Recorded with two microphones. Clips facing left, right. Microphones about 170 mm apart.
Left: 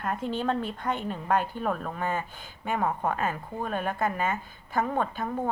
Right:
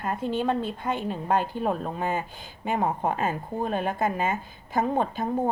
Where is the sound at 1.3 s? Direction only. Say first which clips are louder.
Right 2 dB; 25° right (ahead or behind).